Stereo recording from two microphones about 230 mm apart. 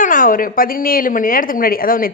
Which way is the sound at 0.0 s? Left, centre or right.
Left.